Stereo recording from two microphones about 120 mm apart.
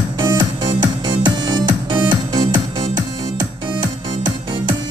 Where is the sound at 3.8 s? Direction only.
40° right (ahead or behind).